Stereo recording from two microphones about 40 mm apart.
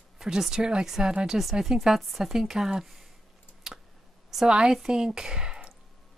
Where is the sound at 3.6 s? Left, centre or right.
Centre.